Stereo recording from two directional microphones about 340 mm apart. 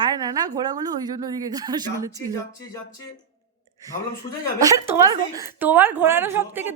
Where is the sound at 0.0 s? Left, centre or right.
Centre.